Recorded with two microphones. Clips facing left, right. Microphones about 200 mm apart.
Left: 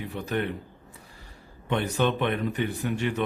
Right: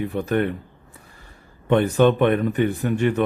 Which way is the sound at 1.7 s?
55° right (ahead or behind).